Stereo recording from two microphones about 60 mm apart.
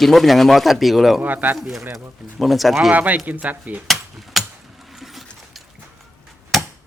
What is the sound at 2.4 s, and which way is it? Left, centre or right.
Speech, centre.